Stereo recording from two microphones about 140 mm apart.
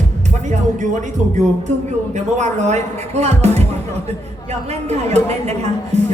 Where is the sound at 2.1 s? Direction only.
55° right (ahead or behind).